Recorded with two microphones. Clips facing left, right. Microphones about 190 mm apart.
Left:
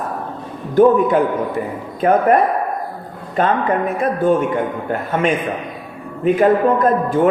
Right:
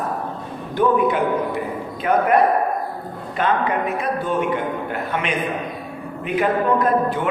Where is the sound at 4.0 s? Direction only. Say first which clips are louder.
Left 6 dB; 50° left (ahead or behind).